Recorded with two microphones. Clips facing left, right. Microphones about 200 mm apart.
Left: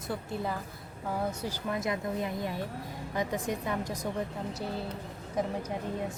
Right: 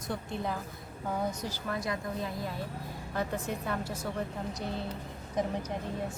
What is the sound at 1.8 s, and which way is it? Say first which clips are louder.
A woman's voice: left 3 dB; 20° left (ahead or behind).